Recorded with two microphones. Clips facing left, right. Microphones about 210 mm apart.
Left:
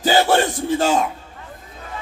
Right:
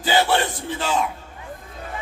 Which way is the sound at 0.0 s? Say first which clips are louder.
Left 4 dB; 45° left (ahead or behind).